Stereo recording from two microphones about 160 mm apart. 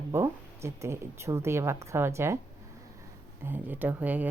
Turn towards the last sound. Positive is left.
turn(degrees=-10)  # may be behind; listen again after turning